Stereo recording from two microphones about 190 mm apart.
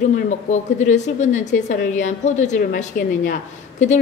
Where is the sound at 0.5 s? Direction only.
40° left (ahead or behind).